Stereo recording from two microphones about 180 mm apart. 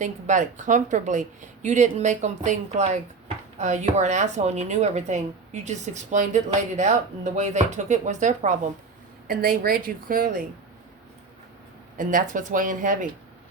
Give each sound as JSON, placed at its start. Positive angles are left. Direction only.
{"t": 0.0, "sound": "speech", "side_deg": -45}
{"t": 9.2, "sound": "a woman's voice", "side_deg": -55}
{"t": 11.9, "sound": "a woman's voice", "side_deg": -45}